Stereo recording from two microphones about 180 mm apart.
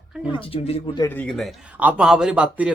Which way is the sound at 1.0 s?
5° left (ahead or behind).